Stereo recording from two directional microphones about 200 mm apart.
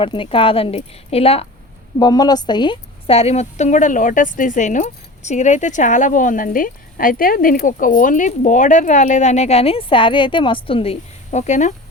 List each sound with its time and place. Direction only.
0.0 s speech: 25° left (ahead or behind)
2.0 s a woman's voice: 20° left (ahead or behind); by 11.7 s 35° left (ahead or behind)